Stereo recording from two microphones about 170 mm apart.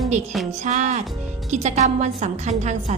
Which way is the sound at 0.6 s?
45° right (ahead or behind).